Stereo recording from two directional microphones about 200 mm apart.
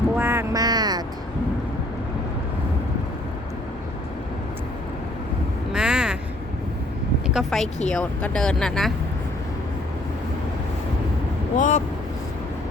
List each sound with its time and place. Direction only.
0.2 s a sound: 10° right (ahead or behind)
5.7 s quack: 5° right (ahead or behind)
7.3 s speech: centre (ahead or behind)
11.5 s speech: 40° left (ahead or behind)